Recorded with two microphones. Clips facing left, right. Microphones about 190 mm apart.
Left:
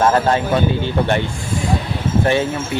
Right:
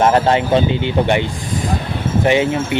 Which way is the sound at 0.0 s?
20° right (ahead or behind).